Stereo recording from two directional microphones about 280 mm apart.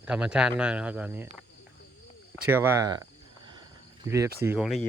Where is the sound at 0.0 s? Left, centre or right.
Centre.